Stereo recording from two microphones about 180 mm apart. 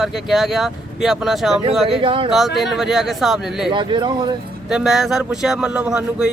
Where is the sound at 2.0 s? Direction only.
30° right (ahead or behind).